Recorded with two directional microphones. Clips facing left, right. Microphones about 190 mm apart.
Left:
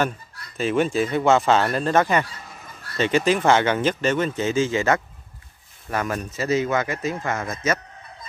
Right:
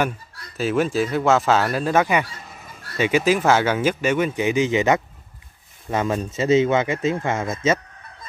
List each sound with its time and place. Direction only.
0.6 s speech: 5° right (ahead or behind); by 7.8 s 25° right (ahead or behind)